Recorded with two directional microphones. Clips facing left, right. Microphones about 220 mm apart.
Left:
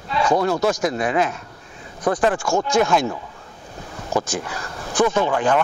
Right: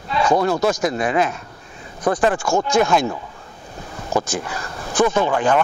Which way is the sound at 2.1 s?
25° right (ahead or behind).